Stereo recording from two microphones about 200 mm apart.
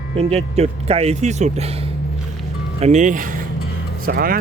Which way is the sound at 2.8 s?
35° right (ahead or behind).